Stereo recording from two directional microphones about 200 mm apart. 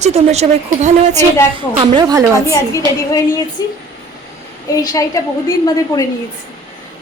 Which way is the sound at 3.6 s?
20° left (ahead or behind).